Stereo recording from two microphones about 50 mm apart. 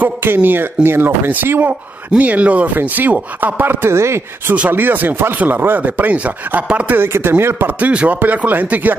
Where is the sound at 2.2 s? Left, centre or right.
Right.